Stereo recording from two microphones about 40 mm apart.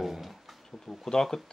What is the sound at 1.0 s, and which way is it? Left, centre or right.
Speech, centre.